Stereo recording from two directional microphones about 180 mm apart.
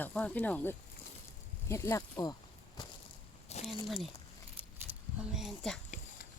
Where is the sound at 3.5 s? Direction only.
35° left (ahead or behind).